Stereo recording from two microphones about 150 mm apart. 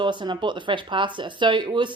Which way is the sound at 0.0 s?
30° right (ahead or behind).